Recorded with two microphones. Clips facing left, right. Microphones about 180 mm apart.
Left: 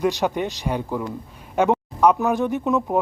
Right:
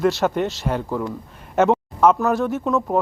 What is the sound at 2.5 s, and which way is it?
Speech, 15° left (ahead or behind).